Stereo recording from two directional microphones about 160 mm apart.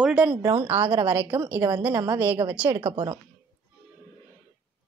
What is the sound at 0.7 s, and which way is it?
A woman's voice, 35° right (ahead or behind).